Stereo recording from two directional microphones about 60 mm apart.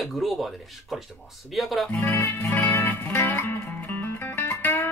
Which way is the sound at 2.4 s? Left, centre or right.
Left.